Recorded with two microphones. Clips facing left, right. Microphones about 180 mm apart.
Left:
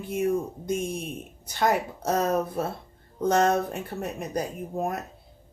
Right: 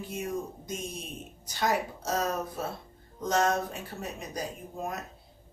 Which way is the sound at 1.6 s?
55° left (ahead or behind).